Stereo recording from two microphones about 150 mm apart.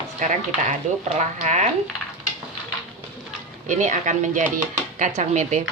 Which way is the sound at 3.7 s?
55° right (ahead or behind).